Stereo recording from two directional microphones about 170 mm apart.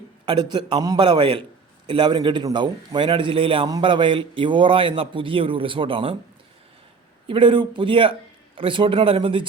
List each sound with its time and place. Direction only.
0.3 s a man's voice: 25° right (ahead or behind)
7.3 s speech: 30° right (ahead or behind)